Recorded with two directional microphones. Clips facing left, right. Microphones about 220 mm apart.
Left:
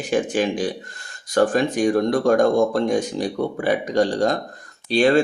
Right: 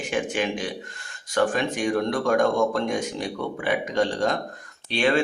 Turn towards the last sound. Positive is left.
turn(degrees=40)  # may be behind; listen again after turning